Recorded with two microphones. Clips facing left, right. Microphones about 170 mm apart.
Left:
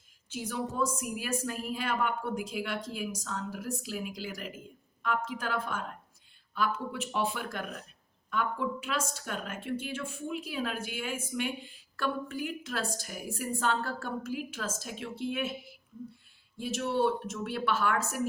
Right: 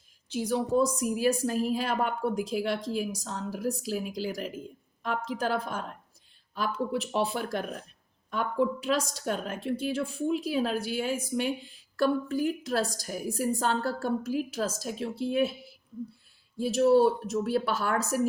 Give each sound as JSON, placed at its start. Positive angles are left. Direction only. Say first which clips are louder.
{"t": 0.3, "sound": "a woman's voice", "louder": "right 7 dB", "side_deg": -35}
{"t": 16.6, "sound": "a woman's voice", "louder": "right 8 dB", "side_deg": -35}